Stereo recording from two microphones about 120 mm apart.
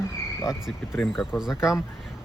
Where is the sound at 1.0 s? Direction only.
5° left (ahead or behind).